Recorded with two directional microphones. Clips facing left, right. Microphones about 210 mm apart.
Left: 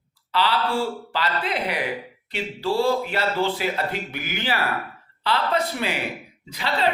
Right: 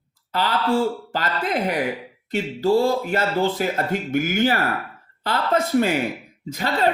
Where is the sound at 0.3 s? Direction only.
45° right (ahead or behind).